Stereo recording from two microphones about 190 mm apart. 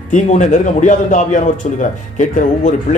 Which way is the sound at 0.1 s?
40° left (ahead or behind).